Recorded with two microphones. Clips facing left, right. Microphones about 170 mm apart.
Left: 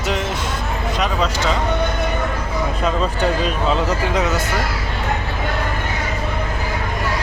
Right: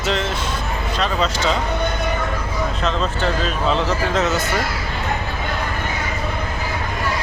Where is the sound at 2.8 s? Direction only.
10° left (ahead or behind).